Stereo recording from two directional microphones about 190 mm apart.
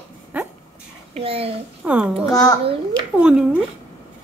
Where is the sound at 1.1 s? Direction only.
30° right (ahead or behind).